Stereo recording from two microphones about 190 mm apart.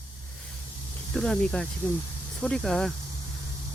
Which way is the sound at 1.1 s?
5° left (ahead or behind).